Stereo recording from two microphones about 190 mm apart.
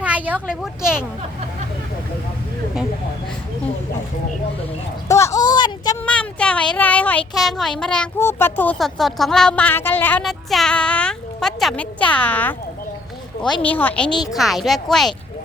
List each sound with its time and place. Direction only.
0.0 s speech: 5° right (ahead or behind)
5.0 s a sound: 15° left (ahead or behind)
6.1 s speech: 5° left (ahead or behind)
14.1 s a woman's voice: 20° left (ahead or behind)
14.3 s speech: centre (ahead or behind)